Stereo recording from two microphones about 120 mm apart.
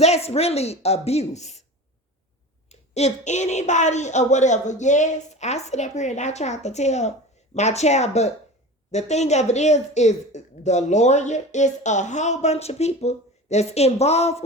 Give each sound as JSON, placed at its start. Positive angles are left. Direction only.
{"t": 0.0, "sound": "speech", "side_deg": 60}
{"t": 2.6, "sound": "speech", "side_deg": 65}